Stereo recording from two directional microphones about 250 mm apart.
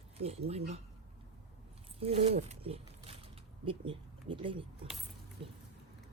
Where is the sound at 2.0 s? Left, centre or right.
Right.